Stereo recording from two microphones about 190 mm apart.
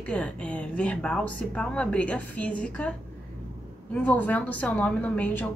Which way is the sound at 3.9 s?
5° left (ahead or behind).